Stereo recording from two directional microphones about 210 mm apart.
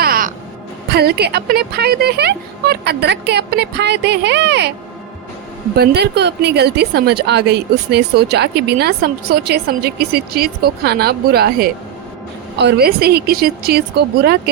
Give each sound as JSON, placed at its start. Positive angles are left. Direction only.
{"t": 0.0, "sound": "music", "side_deg": -40}
{"t": 0.9, "sound": "a woman's voice", "side_deg": -50}
{"t": 5.7, "sound": "a woman's voice", "side_deg": -50}